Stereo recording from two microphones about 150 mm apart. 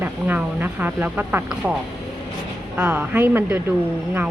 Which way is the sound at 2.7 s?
10° right (ahead or behind).